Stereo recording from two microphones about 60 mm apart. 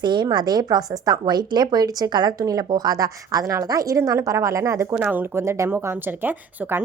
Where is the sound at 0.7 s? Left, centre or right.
Right.